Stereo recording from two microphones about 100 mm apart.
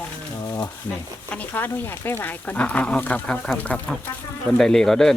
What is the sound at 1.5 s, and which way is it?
Speech, 20° left (ahead or behind).